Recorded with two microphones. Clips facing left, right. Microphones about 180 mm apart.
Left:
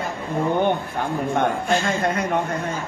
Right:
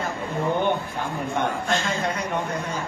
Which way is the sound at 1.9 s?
50° left (ahead or behind).